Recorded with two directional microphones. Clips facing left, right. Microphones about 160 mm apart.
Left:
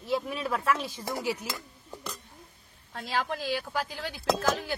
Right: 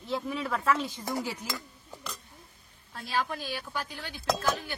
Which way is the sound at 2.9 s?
85° left.